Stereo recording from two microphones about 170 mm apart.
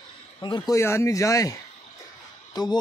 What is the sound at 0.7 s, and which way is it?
Speech, 15° left (ahead or behind).